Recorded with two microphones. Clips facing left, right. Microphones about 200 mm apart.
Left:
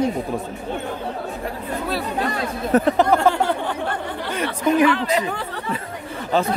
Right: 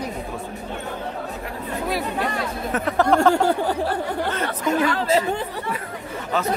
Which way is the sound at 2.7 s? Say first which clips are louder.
Left 9 dB; 35° left (ahead or behind).